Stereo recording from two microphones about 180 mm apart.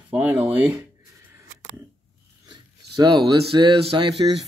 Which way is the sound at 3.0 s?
25° right (ahead or behind).